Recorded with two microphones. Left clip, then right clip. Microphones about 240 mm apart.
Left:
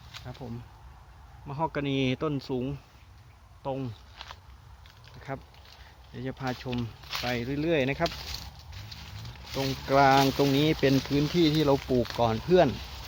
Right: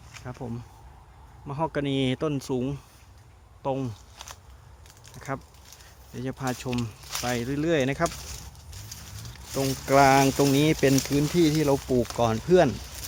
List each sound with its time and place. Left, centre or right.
0.1 s a sound: centre
1.5 s speech: centre
3.6 s walk: right
5.3 s speech: right
9.6 s speech: centre